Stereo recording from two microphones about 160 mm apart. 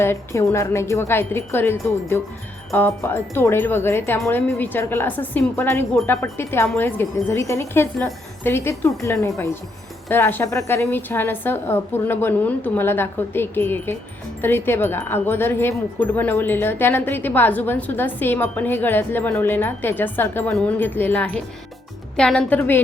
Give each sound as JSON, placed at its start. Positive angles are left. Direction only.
{"t": 0.0, "sound": "a woman's voice", "side_deg": 15}